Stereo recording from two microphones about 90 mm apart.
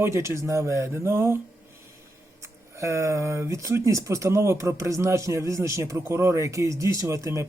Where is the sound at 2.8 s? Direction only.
35° right (ahead or behind).